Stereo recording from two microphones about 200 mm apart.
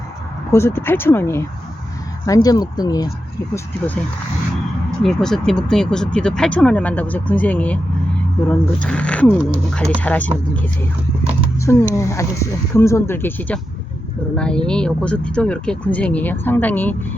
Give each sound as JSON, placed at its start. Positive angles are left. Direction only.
{"t": 0.5, "sound": "speech", "side_deg": 10}
{"t": 5.0, "sound": "speech", "side_deg": 0}
{"t": 11.6, "sound": "speech", "side_deg": 15}